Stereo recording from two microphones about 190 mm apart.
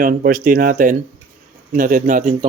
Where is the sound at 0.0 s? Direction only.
45° right (ahead or behind).